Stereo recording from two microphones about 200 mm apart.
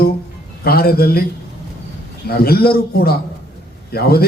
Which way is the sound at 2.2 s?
50° left (ahead or behind).